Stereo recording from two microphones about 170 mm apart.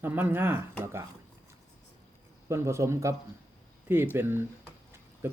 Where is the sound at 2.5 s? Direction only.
15° right (ahead or behind).